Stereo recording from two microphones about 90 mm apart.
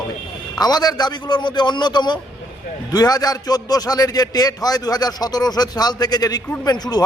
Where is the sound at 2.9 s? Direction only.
45° left (ahead or behind).